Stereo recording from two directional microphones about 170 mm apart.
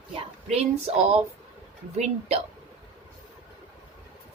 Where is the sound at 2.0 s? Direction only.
40° right (ahead or behind).